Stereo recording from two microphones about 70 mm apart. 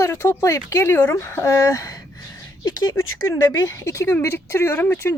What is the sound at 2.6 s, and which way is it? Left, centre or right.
Speech, left.